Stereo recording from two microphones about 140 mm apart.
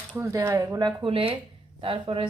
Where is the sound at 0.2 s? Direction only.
20° right (ahead or behind).